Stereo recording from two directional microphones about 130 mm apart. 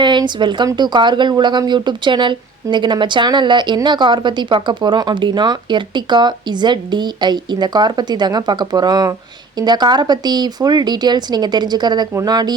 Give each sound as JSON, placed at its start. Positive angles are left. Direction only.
{"t": 0.0, "sound": "a woman's voice", "side_deg": -35}